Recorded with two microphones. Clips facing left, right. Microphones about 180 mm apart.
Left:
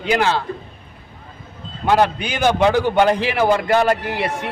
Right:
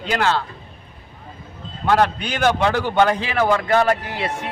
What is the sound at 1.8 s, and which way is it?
A man's voice, 15° left (ahead or behind).